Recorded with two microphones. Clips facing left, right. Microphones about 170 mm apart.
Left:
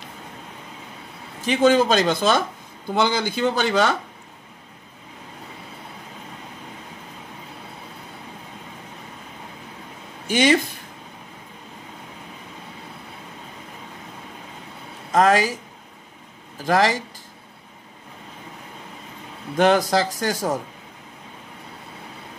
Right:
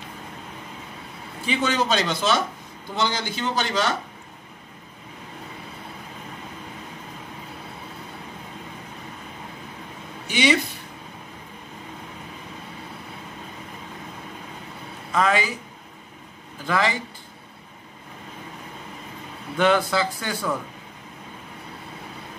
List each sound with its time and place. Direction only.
1.4 s speech: 45° left (ahead or behind)
10.2 s speech: 45° left (ahead or behind)
15.0 s speech: 45° left (ahead or behind)
16.6 s speech: 45° left (ahead or behind)
19.5 s speech: 45° left (ahead or behind)